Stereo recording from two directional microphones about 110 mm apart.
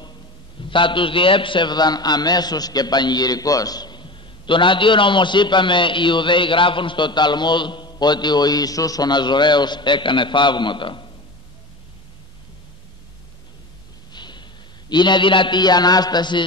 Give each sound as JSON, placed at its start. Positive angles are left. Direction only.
{"t": 0.6, "sound": "a man's voice", "side_deg": 50}
{"t": 14.1, "sound": "a man's voice", "side_deg": 45}